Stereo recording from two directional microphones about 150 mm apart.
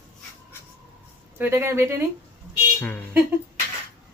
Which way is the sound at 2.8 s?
10° left (ahead or behind).